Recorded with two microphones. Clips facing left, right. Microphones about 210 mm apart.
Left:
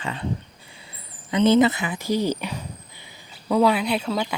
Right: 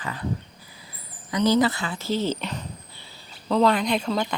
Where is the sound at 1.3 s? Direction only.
25° left (ahead or behind).